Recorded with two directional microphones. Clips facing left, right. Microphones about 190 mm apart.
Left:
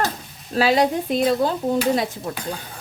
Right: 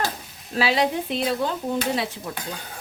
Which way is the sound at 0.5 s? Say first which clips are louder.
Left 4 dB; 45° left (ahead or behind).